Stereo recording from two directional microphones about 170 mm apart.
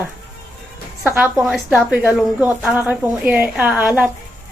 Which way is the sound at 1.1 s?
10° right (ahead or behind).